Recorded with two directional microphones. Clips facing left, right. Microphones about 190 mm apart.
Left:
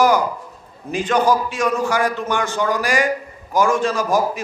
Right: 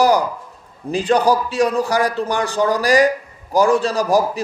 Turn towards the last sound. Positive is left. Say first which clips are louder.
# right 2 dB
turn(degrees=-35)  # may be behind; listen again after turning